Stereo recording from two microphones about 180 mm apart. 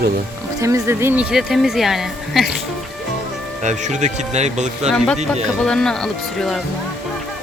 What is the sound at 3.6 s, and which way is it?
Speech, 40° right (ahead or behind).